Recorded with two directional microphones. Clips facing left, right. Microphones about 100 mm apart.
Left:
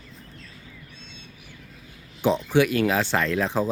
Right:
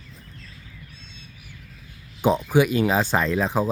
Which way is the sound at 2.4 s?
15° right (ahead or behind).